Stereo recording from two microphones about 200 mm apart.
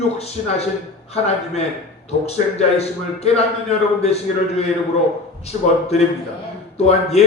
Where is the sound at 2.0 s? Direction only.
30° left (ahead or behind).